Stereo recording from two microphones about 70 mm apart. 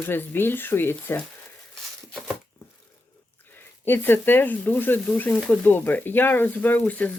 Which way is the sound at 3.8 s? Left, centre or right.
Left.